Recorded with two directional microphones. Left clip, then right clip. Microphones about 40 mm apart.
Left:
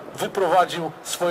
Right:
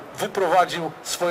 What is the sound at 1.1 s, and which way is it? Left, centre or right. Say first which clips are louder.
Speech: left 1 dB; left.